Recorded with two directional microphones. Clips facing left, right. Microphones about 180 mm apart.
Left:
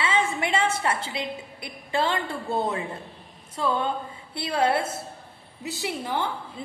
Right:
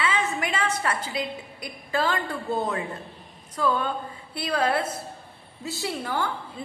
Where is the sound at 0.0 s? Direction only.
25° left (ahead or behind).